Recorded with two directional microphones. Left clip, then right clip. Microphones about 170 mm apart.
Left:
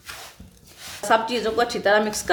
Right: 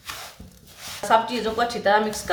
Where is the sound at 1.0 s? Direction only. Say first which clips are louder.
Even; 60° left (ahead or behind).